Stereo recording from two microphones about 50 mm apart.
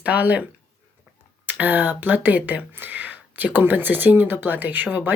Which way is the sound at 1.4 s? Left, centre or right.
Right.